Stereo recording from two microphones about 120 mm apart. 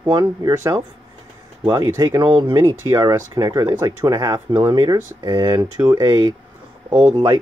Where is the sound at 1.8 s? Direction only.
25° right (ahead or behind).